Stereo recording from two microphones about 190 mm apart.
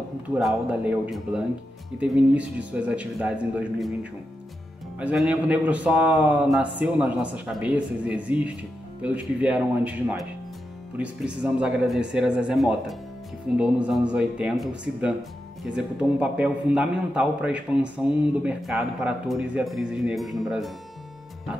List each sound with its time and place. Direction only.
0.3 s a man's voice: 5° right (ahead or behind)